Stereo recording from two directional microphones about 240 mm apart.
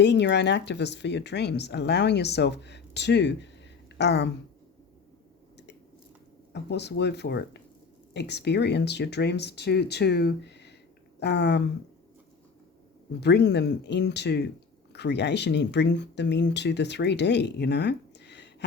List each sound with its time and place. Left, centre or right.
0.0 s speech: left
6.5 s speech: left
13.1 s speech: left